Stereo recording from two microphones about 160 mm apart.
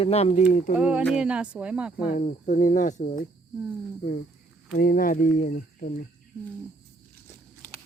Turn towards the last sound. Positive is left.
turn(degrees=55)  # may be behind; listen again after turning